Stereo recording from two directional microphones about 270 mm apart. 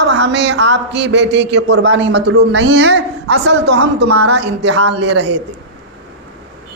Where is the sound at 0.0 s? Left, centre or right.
Right.